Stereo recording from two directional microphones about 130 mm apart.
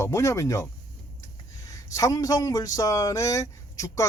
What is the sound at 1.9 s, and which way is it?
Speech, 25° left (ahead or behind).